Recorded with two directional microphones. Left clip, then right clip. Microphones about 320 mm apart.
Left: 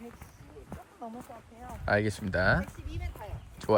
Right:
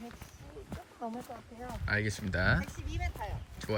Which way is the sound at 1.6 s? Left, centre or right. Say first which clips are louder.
Left 5 dB; centre.